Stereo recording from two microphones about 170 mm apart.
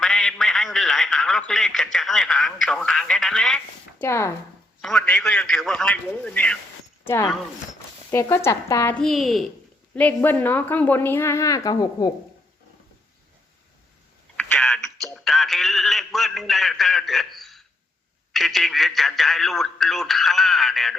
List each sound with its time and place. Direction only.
0.0 s a man's voice: 5° left (ahead or behind)
4.0 s a woman's voice: 15° left (ahead or behind)
4.8 s a man's voice: 5° left (ahead or behind)
9.0 s a man's voice: centre (ahead or behind); by 12.1 s 25° left (ahead or behind)
14.5 s a sound: 5° left (ahead or behind)
18.3 s radio: centre (ahead or behind)